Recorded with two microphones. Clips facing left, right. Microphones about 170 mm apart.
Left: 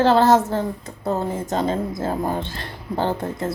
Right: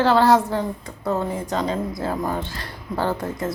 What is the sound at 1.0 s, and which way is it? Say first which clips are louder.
Speech: even; 25° left (ahead or behind).